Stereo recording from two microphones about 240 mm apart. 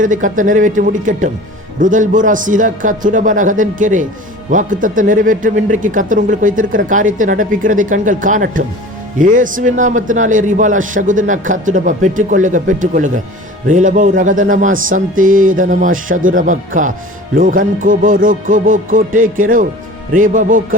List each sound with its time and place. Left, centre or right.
0.0 s speech: right